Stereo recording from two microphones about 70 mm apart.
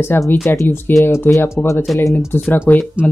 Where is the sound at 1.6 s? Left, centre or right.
Centre.